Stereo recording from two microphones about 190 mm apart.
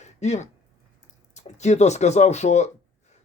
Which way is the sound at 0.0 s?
35° left (ahead or behind).